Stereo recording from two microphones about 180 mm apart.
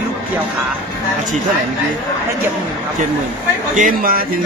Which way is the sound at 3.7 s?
50° right (ahead or behind).